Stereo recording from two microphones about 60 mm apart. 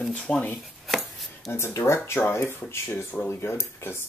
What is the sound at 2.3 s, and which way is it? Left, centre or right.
Speech, left.